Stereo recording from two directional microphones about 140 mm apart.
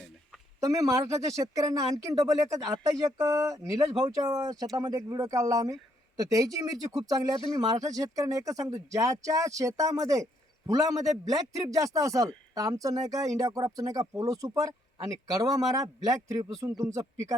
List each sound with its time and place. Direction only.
0.6 s speech: 25° right (ahead or behind)